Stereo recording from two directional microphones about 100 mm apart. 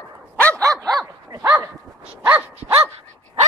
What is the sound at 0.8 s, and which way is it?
Dog, 35° right (ahead or behind).